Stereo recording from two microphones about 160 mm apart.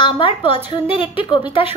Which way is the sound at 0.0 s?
30° left (ahead or behind).